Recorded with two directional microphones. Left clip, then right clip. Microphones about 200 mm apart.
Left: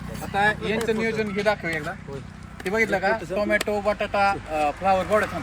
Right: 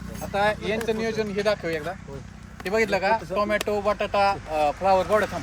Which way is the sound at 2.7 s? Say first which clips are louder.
Even; 45° right (ahead or behind).